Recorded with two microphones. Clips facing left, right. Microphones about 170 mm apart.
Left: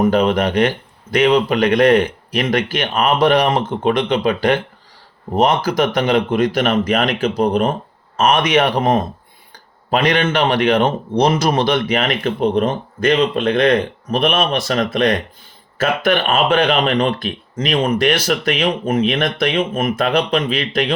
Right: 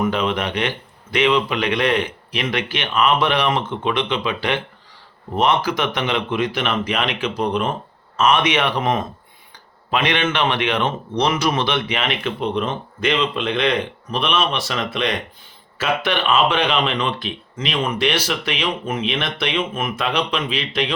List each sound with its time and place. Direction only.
0.0 s speech: 40° left (ahead or behind)